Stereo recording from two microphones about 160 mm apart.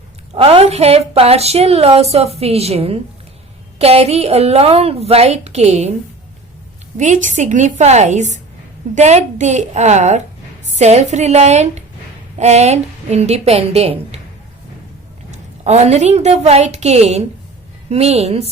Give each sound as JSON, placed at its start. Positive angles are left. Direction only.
{"t": 0.3, "sound": "a woman's voice", "side_deg": -40}
{"t": 6.9, "sound": "a woman's voice", "side_deg": -50}
{"t": 15.6, "sound": "a woman's voice", "side_deg": -45}